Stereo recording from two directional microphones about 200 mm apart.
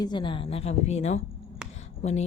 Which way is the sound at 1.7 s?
35° left (ahead or behind).